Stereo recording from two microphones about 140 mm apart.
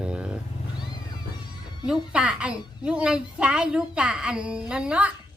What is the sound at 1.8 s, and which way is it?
Speech, 5° right (ahead or behind).